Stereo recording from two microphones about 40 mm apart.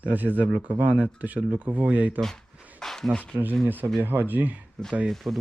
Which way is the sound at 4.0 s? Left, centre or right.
Right.